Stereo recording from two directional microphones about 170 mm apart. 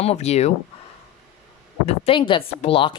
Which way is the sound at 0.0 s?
40° left (ahead or behind).